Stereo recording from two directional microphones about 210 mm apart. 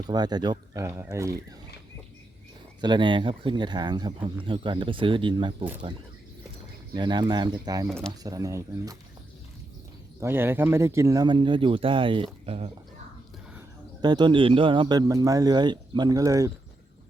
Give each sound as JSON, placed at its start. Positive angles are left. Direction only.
{"t": 0.1, "sound": "speech", "side_deg": -20}
{"t": 2.8, "sound": "speech", "side_deg": -20}
{"t": 6.9, "sound": "speech", "side_deg": -20}
{"t": 7.9, "sound": "speech", "side_deg": 5}
{"t": 8.2, "sound": "speech", "side_deg": -15}
{"t": 10.2, "sound": "speech", "side_deg": -10}